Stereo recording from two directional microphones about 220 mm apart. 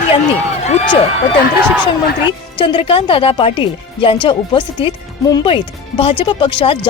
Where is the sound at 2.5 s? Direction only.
20° left (ahead or behind).